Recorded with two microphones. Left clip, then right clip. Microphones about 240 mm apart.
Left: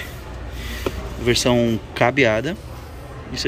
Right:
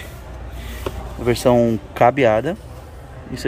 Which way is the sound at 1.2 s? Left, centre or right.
Centre.